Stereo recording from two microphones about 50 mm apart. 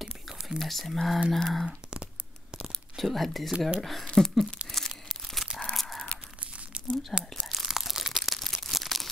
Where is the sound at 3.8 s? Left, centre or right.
Centre.